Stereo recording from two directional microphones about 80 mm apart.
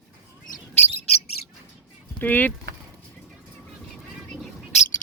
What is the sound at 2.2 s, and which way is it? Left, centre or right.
Speech, left.